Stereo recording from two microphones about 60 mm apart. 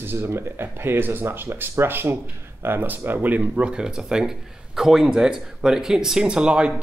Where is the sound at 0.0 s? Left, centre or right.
Right.